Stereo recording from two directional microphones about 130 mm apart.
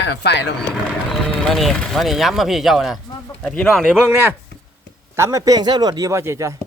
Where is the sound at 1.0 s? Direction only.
5° left (ahead or behind).